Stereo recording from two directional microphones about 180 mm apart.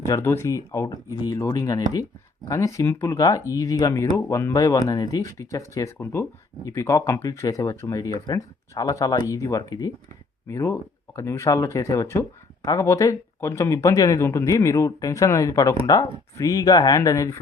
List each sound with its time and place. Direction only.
0.1 s speech: 15° left (ahead or behind)